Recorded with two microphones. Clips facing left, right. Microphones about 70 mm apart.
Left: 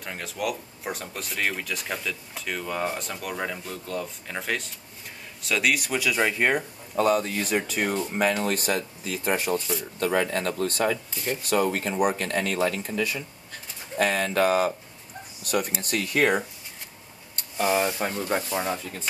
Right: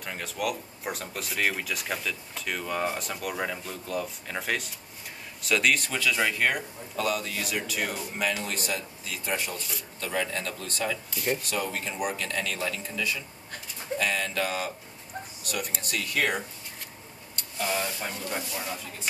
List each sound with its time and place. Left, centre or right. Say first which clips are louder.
0.0 s speech: left 1 dB; centre; by 14.7 s left
15.8 s speech: left 3 dB; left
17.6 s speech: left 7 dB; left